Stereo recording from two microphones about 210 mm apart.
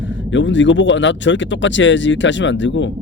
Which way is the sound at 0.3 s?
60° left (ahead or behind).